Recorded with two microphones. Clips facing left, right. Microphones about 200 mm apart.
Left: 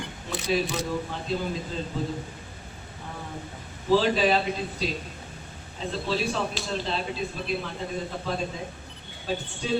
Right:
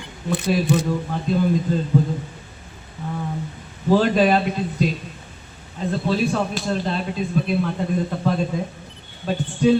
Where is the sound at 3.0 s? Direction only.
50° right (ahead or behind).